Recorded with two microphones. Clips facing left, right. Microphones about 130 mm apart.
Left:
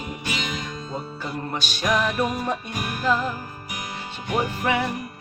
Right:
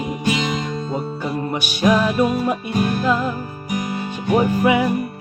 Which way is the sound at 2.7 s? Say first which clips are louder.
Right 10 dB; 35° right (ahead or behind).